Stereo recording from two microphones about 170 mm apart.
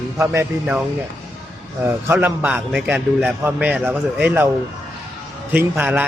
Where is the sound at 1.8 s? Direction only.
10° right (ahead or behind).